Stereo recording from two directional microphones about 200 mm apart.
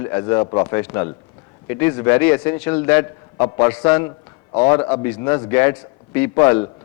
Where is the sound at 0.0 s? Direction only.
15° left (ahead or behind).